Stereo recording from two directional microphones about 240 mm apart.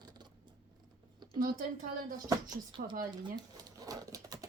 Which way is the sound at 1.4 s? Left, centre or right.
Right.